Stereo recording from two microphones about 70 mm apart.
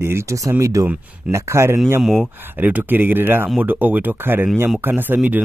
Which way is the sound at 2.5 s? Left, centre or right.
Right.